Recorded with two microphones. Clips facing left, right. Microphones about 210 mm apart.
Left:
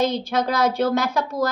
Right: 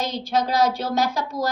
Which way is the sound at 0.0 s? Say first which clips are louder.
Left 3 dB; 55° left (ahead or behind).